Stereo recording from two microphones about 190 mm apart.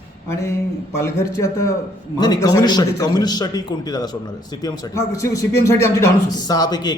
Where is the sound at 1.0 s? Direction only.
15° left (ahead or behind).